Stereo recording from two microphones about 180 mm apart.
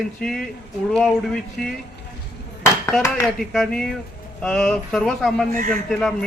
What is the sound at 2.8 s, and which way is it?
A man's voice, 5° left (ahead or behind).